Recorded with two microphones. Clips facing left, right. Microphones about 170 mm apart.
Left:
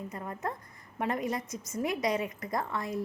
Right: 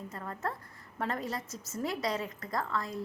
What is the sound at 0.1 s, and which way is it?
A woman's voice, 15° left (ahead or behind).